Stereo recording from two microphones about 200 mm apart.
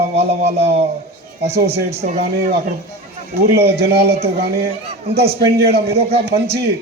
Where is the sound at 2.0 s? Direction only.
45° right (ahead or behind).